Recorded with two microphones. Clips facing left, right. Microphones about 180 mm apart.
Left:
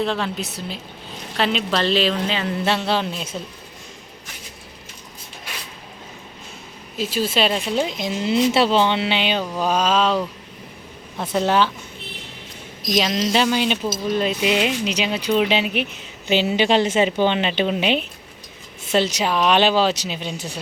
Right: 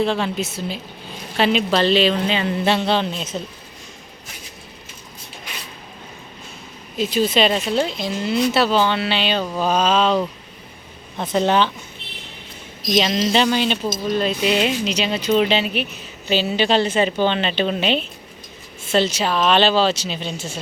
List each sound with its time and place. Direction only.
0.0 s speech: centre (ahead or behind)
6.9 s speech: 5° left (ahead or behind)
11.2 s speech: 5° left (ahead or behind)
12.8 s speech: centre (ahead or behind)